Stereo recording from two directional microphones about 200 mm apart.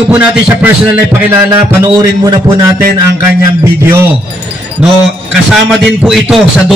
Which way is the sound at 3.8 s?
10° right (ahead or behind).